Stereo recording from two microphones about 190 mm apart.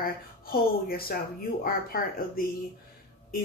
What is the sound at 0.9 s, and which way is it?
Speech, 50° left (ahead or behind).